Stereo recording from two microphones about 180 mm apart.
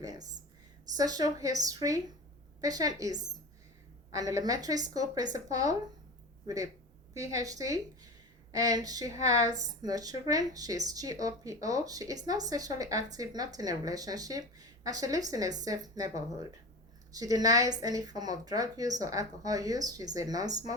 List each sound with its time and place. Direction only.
0.0 s a sound: 20° right (ahead or behind)
0.9 s speech: 20° right (ahead or behind)
7.3 s a woman's voice: 20° right (ahead or behind)